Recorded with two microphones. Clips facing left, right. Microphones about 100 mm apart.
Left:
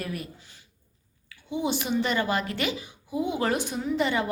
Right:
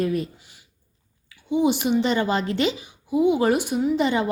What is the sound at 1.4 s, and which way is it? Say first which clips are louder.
A woman's voice: right 7 dB; 20° right (ahead or behind).